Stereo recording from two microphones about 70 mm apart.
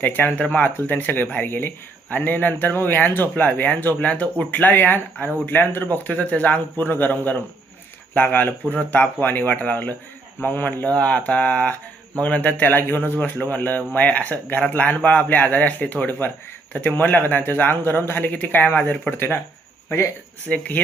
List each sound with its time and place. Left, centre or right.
0.0 s speech: left
20.5 s speech: left